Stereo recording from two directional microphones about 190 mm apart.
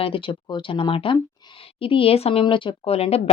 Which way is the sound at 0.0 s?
25° left (ahead or behind).